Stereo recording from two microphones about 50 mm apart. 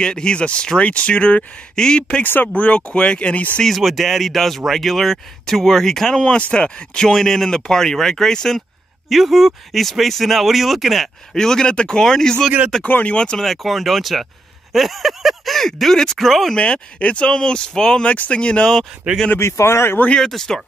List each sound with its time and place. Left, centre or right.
0.0 s speech: centre
2.2 s speech: left
2.5 s speech: left
3.6 s speech: centre
9.1 s speech: centre
11.3 s speech: centre
12.8 s speech: left
13.4 s speech: centre
16.5 s speech: left
19.1 s speech: right
19.4 s speech: left
20.2 s speech: centre